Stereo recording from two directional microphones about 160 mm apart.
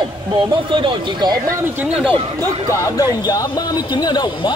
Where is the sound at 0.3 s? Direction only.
30° right (ahead or behind).